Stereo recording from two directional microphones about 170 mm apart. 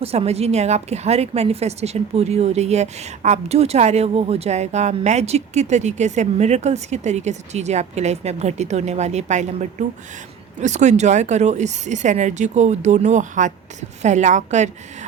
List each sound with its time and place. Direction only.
0.0 s a woman's voice: 35° right (ahead or behind)